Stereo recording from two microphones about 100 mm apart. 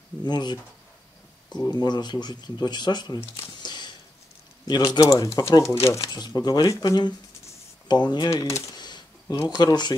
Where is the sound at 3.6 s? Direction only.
45° left (ahead or behind).